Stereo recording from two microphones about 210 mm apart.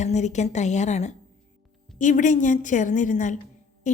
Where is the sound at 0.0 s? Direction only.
35° left (ahead or behind).